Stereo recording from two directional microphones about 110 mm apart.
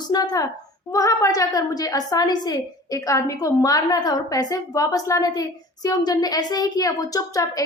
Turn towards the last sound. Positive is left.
turn(degrees=35)  # may be behind; listen again after turning